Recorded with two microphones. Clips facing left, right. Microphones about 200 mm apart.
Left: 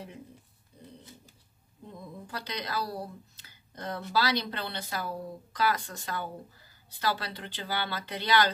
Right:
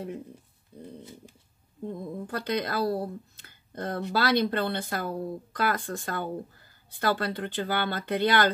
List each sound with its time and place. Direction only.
1.9 s speech: 50° right (ahead or behind)